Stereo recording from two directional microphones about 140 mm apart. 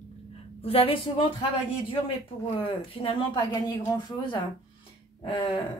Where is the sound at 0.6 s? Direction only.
40° left (ahead or behind).